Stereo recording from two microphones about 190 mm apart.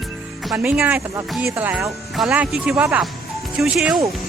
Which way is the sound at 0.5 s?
10° right (ahead or behind).